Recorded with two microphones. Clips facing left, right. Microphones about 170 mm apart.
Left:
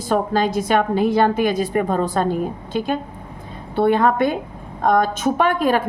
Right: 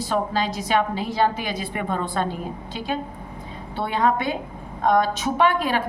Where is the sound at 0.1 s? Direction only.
50° left (ahead or behind).